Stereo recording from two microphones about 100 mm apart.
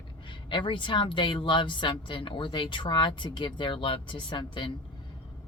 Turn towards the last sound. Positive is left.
turn(degrees=55)  # may be behind; listen again after turning